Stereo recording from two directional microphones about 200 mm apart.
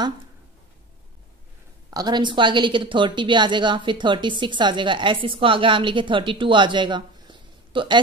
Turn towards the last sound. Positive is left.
turn(degrees=-25)  # may be behind; listen again after turning